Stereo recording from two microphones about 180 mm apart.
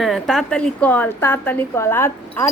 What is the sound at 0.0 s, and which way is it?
A woman's voice, centre (ahead or behind).